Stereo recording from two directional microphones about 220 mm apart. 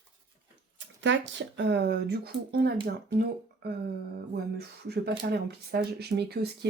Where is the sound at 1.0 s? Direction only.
55° right (ahead or behind).